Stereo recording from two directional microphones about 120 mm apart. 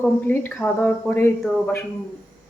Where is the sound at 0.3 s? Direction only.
15° left (ahead or behind).